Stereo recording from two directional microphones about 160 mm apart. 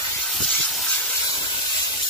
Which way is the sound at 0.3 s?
Centre (ahead or behind).